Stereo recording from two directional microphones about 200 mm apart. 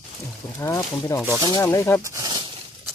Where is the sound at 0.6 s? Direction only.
15° left (ahead or behind).